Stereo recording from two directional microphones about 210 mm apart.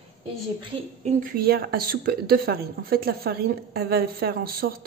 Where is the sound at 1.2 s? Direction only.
45° right (ahead or behind).